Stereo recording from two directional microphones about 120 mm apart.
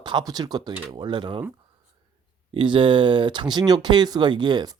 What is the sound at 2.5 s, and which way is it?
Speech, 45° right (ahead or behind).